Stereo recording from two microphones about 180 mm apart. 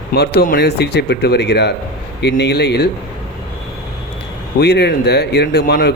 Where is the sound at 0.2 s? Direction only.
55° left (ahead or behind).